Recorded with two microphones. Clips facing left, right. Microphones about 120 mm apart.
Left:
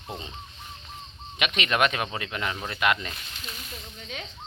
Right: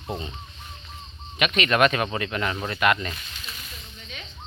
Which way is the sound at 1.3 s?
15° left (ahead or behind).